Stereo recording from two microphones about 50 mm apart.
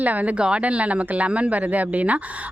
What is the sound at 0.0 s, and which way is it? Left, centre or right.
Speech, right.